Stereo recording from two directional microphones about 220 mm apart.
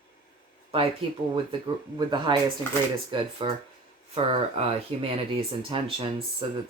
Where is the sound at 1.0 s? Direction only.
25° right (ahead or behind).